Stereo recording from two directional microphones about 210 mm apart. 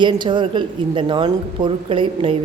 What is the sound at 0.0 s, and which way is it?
Speech, 20° right (ahead or behind).